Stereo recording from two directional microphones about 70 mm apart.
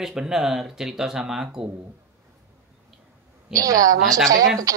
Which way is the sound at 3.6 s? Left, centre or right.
Right.